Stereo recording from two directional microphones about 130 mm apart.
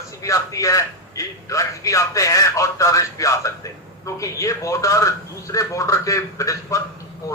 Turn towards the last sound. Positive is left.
turn(degrees=25)  # may be behind; listen again after turning